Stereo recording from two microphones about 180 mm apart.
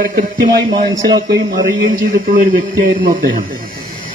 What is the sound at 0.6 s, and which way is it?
Speech, 25° right (ahead or behind).